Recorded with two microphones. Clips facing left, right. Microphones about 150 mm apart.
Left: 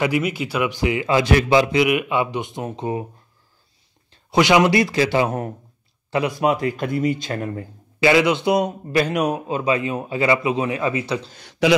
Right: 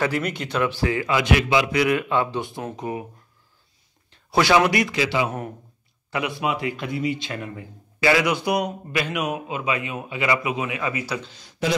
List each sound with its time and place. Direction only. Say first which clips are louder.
0.0 s a man's voice: left 3 dB; 10° left (ahead or behind); by 3.1 s 25° left (ahead or behind)
4.3 s speech: left 2 dB; 20° left (ahead or behind)
4.7 s a man's voice: left 4 dB; 35° left (ahead or behind)
8.0 s speech: left 4 dB; 25° left (ahead or behind)
8.9 s a man's voice: left 7 dB; 35° left (ahead or behind)
11.3 s speech: left 8 dB; 70° left (ahead or behind)